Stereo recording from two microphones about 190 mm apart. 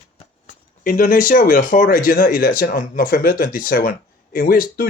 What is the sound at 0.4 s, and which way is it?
Speech, 45° left (ahead or behind).